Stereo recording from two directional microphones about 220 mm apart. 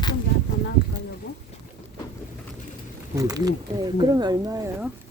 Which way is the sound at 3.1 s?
15° right (ahead or behind).